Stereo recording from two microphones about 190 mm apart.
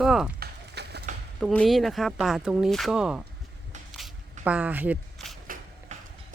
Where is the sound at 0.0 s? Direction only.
5° right (ahead or behind).